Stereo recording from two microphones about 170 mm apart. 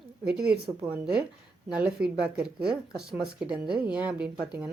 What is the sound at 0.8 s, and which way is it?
Speech, 15° right (ahead or behind).